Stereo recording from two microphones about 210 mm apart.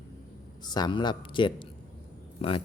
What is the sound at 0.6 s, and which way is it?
Speech, 20° left (ahead or behind).